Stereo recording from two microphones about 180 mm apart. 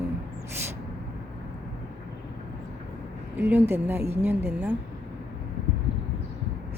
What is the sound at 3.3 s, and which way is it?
A woman's voice, 10° right (ahead or behind).